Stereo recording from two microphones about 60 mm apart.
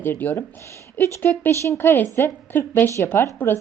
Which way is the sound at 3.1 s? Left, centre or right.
Left.